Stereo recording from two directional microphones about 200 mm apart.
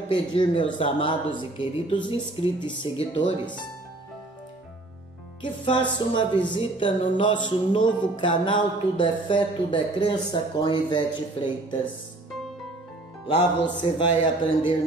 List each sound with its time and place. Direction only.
0.1 s speech: 25° left (ahead or behind)
5.4 s speech: 25° left (ahead or behind)
13.7 s speech: 25° left (ahead or behind)